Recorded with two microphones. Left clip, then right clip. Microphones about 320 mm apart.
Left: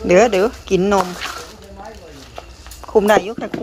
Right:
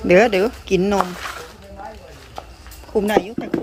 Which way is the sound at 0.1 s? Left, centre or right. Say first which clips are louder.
Left 1 dB; centre.